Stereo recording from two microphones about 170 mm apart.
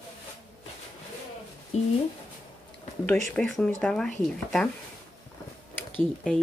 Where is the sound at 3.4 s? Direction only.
5° left (ahead or behind).